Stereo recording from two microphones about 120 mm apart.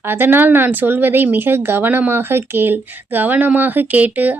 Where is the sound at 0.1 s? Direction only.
15° right (ahead or behind).